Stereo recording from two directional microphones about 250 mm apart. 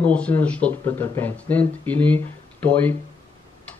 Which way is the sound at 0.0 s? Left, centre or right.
Centre.